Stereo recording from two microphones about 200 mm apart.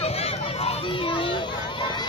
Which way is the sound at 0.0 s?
30° left (ahead or behind).